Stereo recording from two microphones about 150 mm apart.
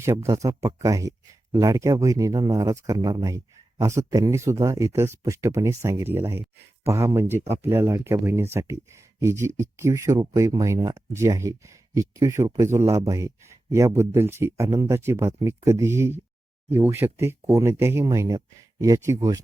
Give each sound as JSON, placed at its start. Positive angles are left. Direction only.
{"t": 0.0, "sound": "speech", "side_deg": -20}